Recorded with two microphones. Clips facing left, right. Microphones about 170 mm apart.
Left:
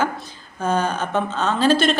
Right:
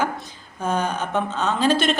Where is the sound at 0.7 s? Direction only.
15° right (ahead or behind).